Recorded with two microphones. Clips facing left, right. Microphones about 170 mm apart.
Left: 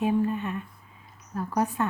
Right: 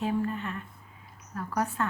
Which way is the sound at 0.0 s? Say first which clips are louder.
Left 4 dB; 15° left (ahead or behind).